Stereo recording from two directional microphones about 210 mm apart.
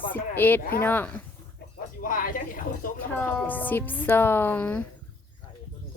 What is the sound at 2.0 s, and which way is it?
Speech, 40° left (ahead or behind).